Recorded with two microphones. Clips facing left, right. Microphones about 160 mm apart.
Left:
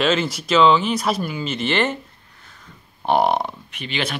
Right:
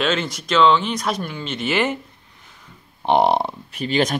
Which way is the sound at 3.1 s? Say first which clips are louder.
Right 1 dB; 25° right (ahead or behind).